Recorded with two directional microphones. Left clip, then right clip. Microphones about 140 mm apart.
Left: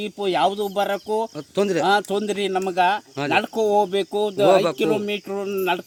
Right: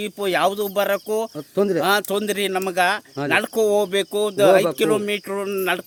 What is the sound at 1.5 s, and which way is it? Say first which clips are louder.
Speech: right 1 dB; 35° right (ahead or behind).